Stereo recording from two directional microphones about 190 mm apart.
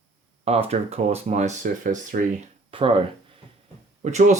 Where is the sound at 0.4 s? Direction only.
35° right (ahead or behind).